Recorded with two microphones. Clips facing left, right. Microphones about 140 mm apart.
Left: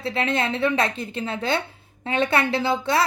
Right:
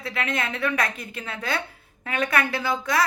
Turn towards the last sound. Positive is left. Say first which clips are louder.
# left 3 dB
turn(degrees=25)  # may be behind; listen again after turning